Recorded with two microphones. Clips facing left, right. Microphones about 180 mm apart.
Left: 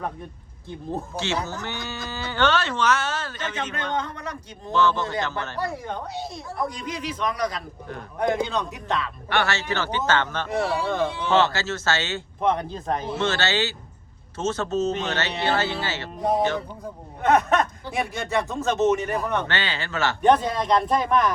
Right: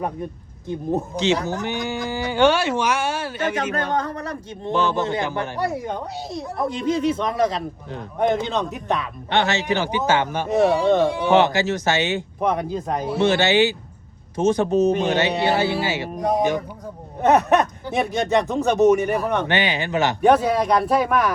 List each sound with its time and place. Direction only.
0.7 s a man's voice: 20° right (ahead or behind)
3.9 s a man's voice: 35° right (ahead or behind)
4.7 s a man's voice: 15° right (ahead or behind)